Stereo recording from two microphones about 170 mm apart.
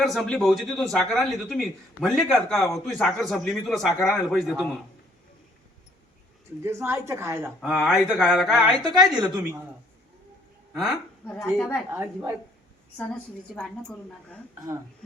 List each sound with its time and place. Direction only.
0.0 s speech: centre (ahead or behind)
6.6 s a woman's voice: 15° right (ahead or behind)
7.6 s speech: centre (ahead or behind)
8.8 s a woman's voice: 25° right (ahead or behind)
10.8 s speech: centre (ahead or behind)
11.9 s a woman's voice: 15° right (ahead or behind)
13.6 s a woman's voice: 5° left (ahead or behind)